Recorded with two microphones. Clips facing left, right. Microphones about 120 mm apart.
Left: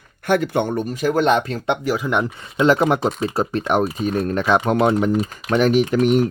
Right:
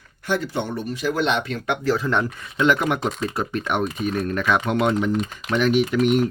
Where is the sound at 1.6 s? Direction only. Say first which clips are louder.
Left 1 dB; 20° left (ahead or behind).